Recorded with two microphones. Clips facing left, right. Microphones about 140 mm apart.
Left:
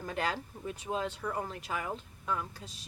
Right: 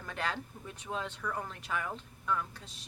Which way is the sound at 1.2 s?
35° left (ahead or behind).